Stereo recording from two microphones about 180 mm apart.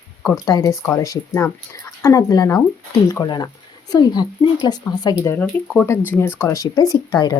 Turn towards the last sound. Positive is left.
turn(degrees=20)  # may be behind; listen again after turning